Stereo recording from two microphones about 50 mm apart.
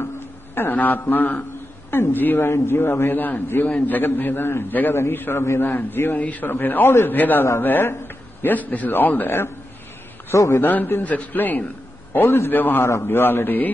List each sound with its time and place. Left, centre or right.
0.6 s a man's voice: left
2.6 s a man's voice: left
3.1 s a man's voice: left
5.3 s a man's voice: left
5.8 s a man's voice: left
10.3 s a man's voice: left
10.6 s a man's voice: left
12.3 s a man's voice: left